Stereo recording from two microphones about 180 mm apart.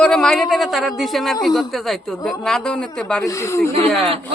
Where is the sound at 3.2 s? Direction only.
15° left (ahead or behind).